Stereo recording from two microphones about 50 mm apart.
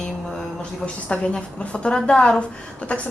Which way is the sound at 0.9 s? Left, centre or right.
Left.